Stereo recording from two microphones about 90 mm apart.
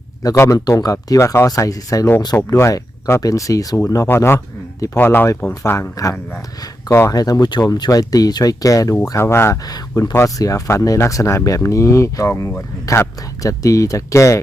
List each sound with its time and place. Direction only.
0.3 s speech: 30° left (ahead or behind)
0.6 s speech: 45° left (ahead or behind)
4.1 s speech: 25° left (ahead or behind)
5.7 s speech: 35° left (ahead or behind)
9.6 s speech: 40° left (ahead or behind)